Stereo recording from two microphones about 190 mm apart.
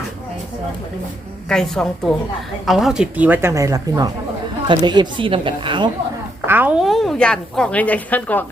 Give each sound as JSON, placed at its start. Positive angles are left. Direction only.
{"t": 1.5, "sound": "a woman's voice", "side_deg": 5}
{"t": 6.5, "sound": "a woman's voice", "side_deg": -10}